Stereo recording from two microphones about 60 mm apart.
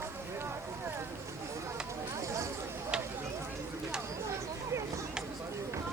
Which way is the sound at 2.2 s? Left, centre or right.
Right.